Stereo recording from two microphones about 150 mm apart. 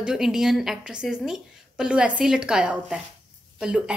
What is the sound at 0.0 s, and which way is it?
A woman's voice, 5° right (ahead or behind).